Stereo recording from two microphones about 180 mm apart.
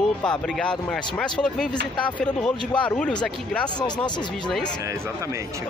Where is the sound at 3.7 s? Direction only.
25° left (ahead or behind).